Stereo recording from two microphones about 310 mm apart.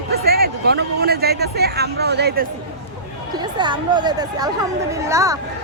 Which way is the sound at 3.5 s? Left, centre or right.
Centre.